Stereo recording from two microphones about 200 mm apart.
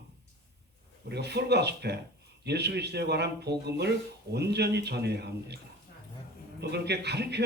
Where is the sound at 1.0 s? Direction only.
55° right (ahead or behind).